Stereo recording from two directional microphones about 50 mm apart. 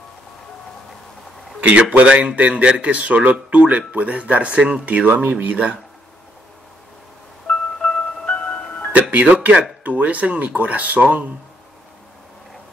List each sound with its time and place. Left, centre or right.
1.6 s a man's voice: right
7.4 s music: left
9.1 s speech: right